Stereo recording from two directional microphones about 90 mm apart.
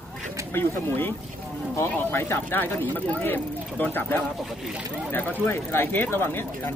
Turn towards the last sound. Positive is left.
turn(degrees=25)  # may be behind; listen again after turning